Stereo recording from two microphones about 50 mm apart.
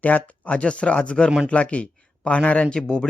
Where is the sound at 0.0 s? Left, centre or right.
Left.